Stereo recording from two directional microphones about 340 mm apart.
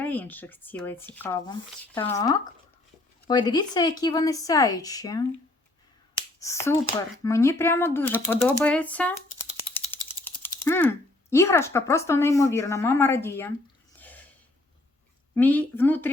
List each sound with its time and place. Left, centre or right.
0.0 s a woman's voice: centre
6.4 s a woman's voice: centre
14.0 s a sound: centre
15.4 s speech: centre